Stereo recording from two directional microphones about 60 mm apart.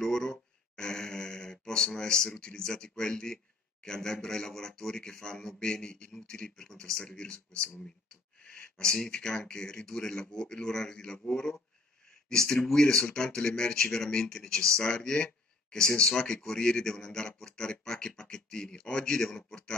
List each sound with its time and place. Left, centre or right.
0.0 s a sound: centre
3.8 s a man's voice: centre
12.6 s a man's voice: centre